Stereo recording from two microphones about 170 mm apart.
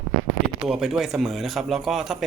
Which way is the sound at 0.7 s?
Centre (ahead or behind).